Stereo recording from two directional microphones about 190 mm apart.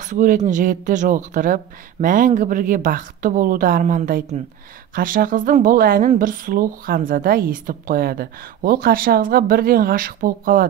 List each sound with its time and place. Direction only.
0.0 s a woman's voice: 40° right (ahead or behind)